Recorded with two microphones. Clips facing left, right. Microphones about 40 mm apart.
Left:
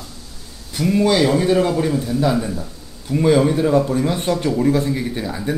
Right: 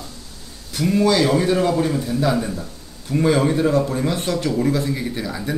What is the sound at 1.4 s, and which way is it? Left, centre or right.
A man's voice, centre.